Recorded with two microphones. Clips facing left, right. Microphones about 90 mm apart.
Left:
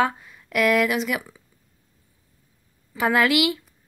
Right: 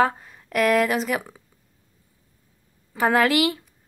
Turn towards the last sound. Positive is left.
turn(degrees=-40)  # may be behind; listen again after turning